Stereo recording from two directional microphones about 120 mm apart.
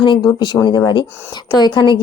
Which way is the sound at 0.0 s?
40° left (ahead or behind).